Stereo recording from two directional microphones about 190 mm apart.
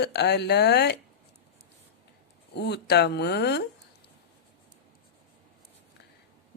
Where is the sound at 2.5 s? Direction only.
60° left (ahead or behind).